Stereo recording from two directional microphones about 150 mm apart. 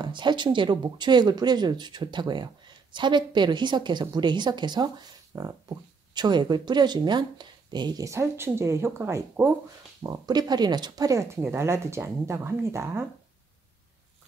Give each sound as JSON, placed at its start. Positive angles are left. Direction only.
{"t": 0.0, "sound": "speech", "side_deg": -30}